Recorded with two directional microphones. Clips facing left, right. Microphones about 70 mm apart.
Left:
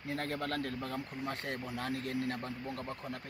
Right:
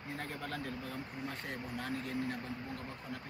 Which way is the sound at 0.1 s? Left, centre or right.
Left.